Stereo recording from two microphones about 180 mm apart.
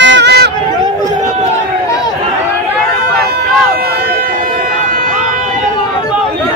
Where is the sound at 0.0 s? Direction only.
75° right (ahead or behind).